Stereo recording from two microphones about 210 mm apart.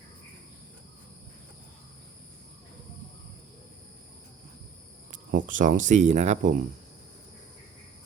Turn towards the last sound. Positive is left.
turn(degrees=-35)  # may be behind; listen again after turning